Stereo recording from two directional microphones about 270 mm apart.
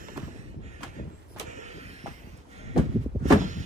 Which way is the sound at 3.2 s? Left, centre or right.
Right.